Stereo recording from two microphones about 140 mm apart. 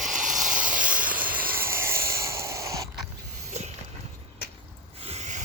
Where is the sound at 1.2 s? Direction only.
10° right (ahead or behind).